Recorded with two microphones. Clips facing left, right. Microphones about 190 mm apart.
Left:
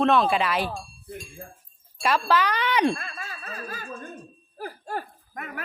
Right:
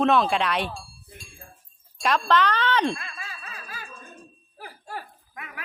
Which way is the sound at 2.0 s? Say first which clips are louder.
Right 1 dB; 5° left (ahead or behind).